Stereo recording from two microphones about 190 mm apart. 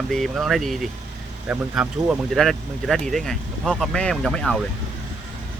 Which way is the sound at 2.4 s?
Centre (ahead or behind).